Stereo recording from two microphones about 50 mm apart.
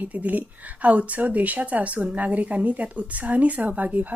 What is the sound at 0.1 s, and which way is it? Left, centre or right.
A woman's voice, right.